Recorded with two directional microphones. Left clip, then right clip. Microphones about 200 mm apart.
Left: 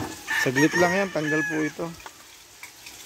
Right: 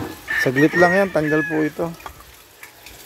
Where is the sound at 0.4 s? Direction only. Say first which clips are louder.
Right 5 dB; centre (ahead or behind).